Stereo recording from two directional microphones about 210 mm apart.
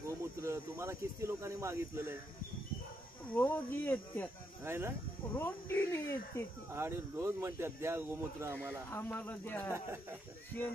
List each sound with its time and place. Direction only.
0.4 s speech: 15° right (ahead or behind)
3.3 s speech: 10° left (ahead or behind)
4.6 s speech: 10° right (ahead or behind)
5.3 s speech: 10° left (ahead or behind)
6.7 s speech: 10° right (ahead or behind)
8.9 s speech: 10° left (ahead or behind)
9.7 s speech: 10° right (ahead or behind)